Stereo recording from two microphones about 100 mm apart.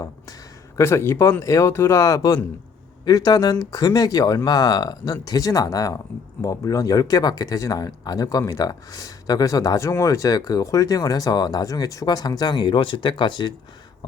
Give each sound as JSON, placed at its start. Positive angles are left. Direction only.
{"t": 0.8, "sound": "speech", "side_deg": 25}